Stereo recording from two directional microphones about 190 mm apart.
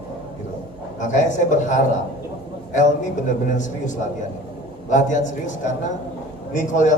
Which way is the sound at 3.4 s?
40° left (ahead or behind).